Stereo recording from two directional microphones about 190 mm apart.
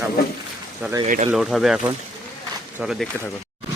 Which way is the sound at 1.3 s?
Centre (ahead or behind).